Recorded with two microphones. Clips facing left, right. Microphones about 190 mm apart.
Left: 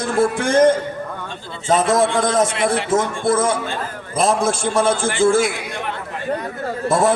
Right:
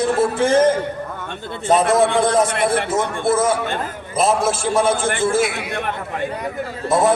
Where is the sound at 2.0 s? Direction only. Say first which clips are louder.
Right 1 dB; 60° right (ahead or behind).